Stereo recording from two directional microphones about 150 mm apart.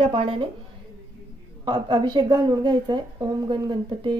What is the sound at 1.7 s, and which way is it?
A woman's voice, 30° right (ahead or behind).